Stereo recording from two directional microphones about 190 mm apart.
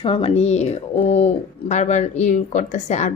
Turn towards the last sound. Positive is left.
turn(degrees=40)  # may be behind; listen again after turning